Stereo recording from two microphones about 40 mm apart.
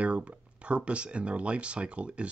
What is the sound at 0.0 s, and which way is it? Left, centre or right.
Speech, right.